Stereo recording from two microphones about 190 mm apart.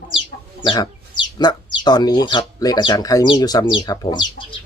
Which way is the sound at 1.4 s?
20° left (ahead or behind).